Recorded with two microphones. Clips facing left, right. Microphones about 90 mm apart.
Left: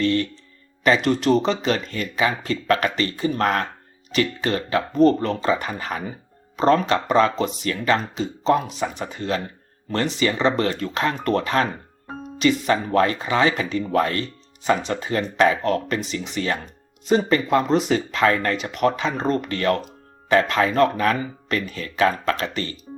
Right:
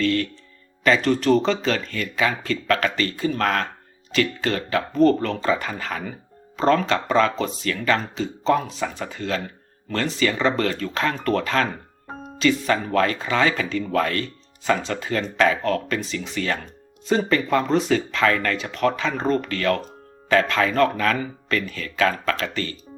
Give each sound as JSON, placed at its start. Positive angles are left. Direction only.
{"t": 0.0, "sound": "speech", "side_deg": 20}